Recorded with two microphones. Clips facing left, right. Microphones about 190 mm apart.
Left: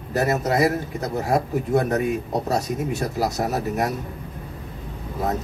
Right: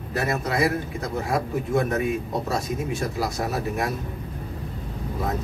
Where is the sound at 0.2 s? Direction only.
40° left (ahead or behind).